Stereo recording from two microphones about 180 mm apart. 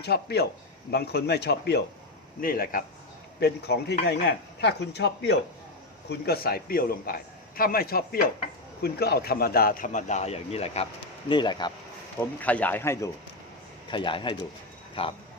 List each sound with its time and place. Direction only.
0.0 s a man's voice: 65° left (ahead or behind)
2.4 s speech: 55° left (ahead or behind)
3.4 s a man's voice: 65° left (ahead or behind)
6.1 s a man's voice: 60° left (ahead or behind); by 11.7 s 25° left (ahead or behind)
12.2 s speech: 10° left (ahead or behind)
13.9 s speech: 25° left (ahead or behind)